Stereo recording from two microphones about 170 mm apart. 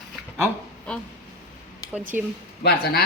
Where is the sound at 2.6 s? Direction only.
65° left (ahead or behind).